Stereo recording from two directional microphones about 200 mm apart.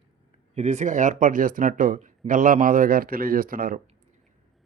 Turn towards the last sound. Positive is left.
turn(degrees=-45)  # may be behind; listen again after turning